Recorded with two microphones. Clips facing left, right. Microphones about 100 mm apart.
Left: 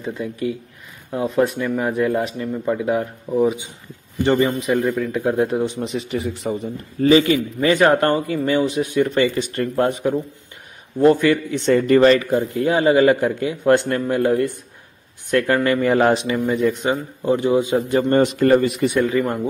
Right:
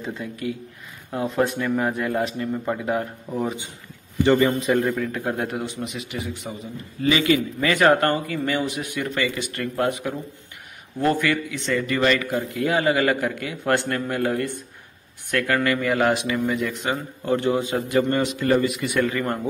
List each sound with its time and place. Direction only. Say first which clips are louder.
1.3 s a man's voice: left 3 dB; 5° left (ahead or behind)
3.3 s speech: left 9 dB; centre (ahead or behind)
4.2 s speech: left 1 dB; 20° left (ahead or behind)
4.7 s speech: left 2 dB; 5° left (ahead or behind)
5.1 s speech: left 7 dB; 20° left (ahead or behind)
5.8 s speech: left 6 dB; 35° left (ahead or behind)
11.0 s speech: left 7 dB; 20° left (ahead or behind)
11.5 s speech: left 9 dB; 40° left (ahead or behind); by 17.8 s 20° left (ahead or behind)
17.9 s speech: left 4 dB; 30° left (ahead or behind)
18.2 s a man's voice: left 8 dB; 50° left (ahead or behind)
18.5 s speech: left 5 dB; 35° left (ahead or behind)
18.9 s a man's voice: left 4 dB; 20° left (ahead or behind)